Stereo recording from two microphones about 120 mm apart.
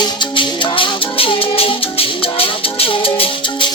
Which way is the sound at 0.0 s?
40° left (ahead or behind).